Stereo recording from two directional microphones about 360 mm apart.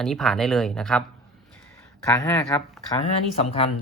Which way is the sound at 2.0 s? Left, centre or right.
Centre.